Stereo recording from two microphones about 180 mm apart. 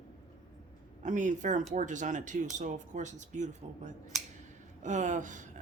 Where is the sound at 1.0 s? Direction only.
40° right (ahead or behind).